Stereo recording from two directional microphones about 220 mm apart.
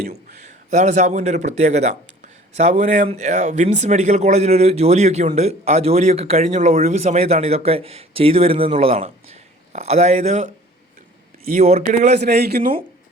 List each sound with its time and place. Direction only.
0.0 s a man's voice: 30° right (ahead or behind)
11.6 s a man's voice: 30° right (ahead or behind)
12.2 s a man's voice: 50° right (ahead or behind)